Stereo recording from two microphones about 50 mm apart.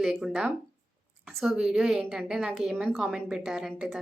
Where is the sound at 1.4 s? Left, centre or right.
Centre.